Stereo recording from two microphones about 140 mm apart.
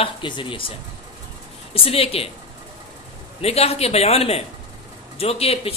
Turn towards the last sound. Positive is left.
turn(degrees=45)  # may be behind; listen again after turning